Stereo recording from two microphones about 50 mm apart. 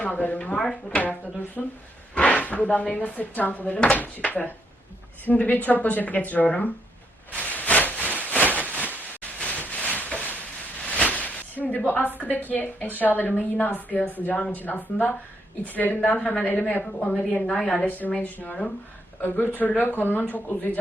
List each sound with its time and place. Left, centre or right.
0.0 s a woman's voice: left
0.5 s speech: centre
1.6 s a woman's voice: left
2.1 s speech: left
3.0 s a woman's voice: left
3.7 s speech: left
3.9 s a woman's voice: left
7.3 s a sound: left
11.9 s a woman's voice: left
17.4 s a woman's voice: centre
17.8 s a woman's voice: left
19.2 s a woman's voice: left